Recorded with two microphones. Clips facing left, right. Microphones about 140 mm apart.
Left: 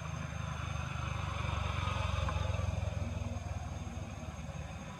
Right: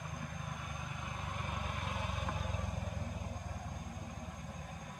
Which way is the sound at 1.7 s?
45° right (ahead or behind).